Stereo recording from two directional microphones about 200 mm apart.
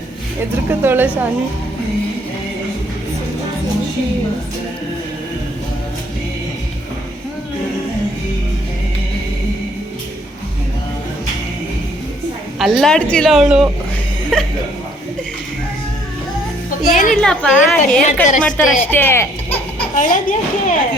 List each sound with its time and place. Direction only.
0.7 s a woman's voice: 10° right (ahead or behind)
12.5 s a woman's voice: centre (ahead or behind)
16.9 s speech: 40° left (ahead or behind)
17.2 s a woman's voice: 5° left (ahead or behind)
20.0 s speech: 40° left (ahead or behind)